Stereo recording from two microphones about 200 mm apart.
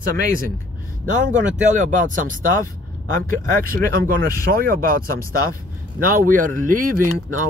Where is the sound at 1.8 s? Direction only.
40° right (ahead or behind).